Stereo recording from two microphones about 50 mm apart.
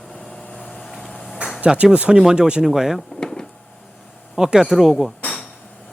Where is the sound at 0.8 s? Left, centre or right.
Centre.